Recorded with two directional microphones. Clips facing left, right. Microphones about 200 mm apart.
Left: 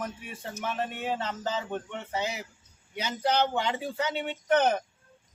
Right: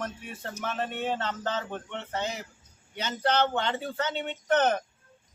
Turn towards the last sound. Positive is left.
turn(degrees=10)  # may be behind; listen again after turning